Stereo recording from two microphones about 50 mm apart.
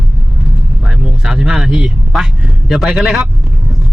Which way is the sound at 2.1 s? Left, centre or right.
Centre.